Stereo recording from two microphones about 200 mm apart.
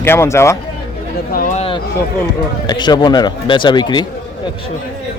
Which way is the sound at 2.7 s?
20° left (ahead or behind).